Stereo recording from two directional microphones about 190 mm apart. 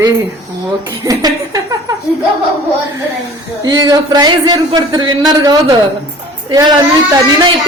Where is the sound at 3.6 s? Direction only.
20° right (ahead or behind).